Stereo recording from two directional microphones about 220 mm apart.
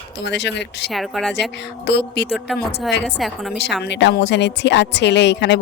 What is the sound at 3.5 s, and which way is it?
Speech, 50° left (ahead or behind).